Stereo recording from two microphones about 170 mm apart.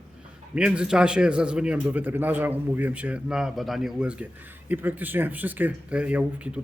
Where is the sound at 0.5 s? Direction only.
5° right (ahead or behind).